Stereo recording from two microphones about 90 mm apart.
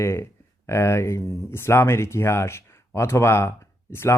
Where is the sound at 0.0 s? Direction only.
30° left (ahead or behind).